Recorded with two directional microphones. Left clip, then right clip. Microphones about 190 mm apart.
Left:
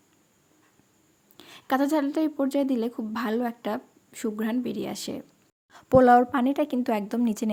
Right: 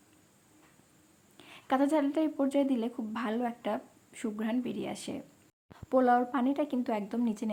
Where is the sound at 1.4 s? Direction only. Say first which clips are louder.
Left 4 dB; 25° left (ahead or behind).